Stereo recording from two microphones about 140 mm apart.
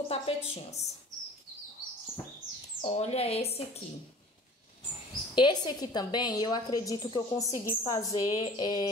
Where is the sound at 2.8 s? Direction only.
45° left (ahead or behind).